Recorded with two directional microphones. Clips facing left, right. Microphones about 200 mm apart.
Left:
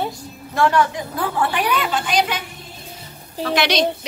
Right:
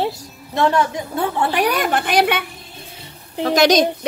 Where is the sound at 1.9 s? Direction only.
55° right (ahead or behind).